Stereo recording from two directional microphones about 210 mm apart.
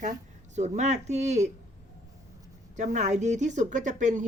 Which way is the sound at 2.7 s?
35° right (ahead or behind).